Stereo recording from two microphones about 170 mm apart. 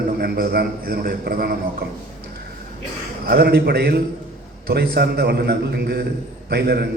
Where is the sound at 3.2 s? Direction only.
60° right (ahead or behind).